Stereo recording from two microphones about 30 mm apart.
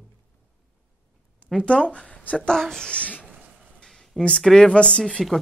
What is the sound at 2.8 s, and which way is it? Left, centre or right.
Speech, left.